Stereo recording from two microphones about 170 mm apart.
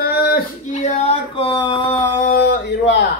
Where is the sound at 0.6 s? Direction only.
45° left (ahead or behind).